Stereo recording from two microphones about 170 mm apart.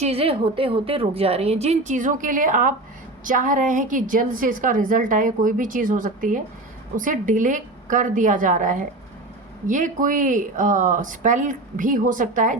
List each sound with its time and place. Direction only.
0.0 s a woman's voice: 35° right (ahead or behind)